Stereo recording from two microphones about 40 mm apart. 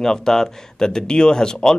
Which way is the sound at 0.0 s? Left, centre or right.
Centre.